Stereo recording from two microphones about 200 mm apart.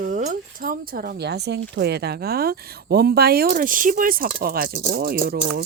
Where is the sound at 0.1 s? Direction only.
40° right (ahead or behind).